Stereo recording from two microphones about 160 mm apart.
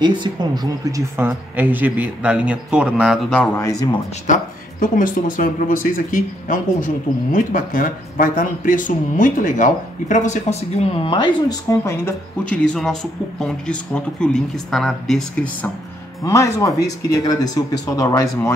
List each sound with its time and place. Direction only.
0.0 s speech: 30° right (ahead or behind); by 3.4 s 5° left (ahead or behind)
3.5 s speech: 20° left (ahead or behind)
4.3 s speech: 60° left (ahead or behind); by 11.2 s 35° left (ahead or behind)
11.4 s speech: 20° left (ahead or behind)
12.6 s speech: centre (ahead or behind)
16.3 s speech: 20° left (ahead or behind)